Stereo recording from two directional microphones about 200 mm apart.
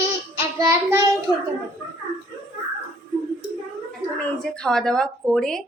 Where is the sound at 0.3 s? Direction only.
15° right (ahead or behind).